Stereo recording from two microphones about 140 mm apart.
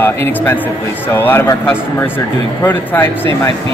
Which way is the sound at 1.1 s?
15° left (ahead or behind).